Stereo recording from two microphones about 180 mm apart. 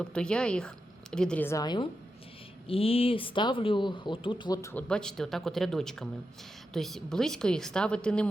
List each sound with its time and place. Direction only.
0.0 s a woman's voice: 5° left (ahead or behind); by 4.7 s 20° left (ahead or behind)
4.7 s a woman's voice: 5° left (ahead or behind)